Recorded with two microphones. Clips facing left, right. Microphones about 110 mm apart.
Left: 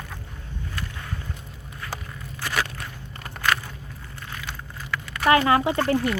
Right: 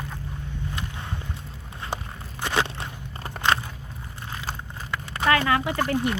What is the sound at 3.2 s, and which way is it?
Biting, 25° right (ahead or behind).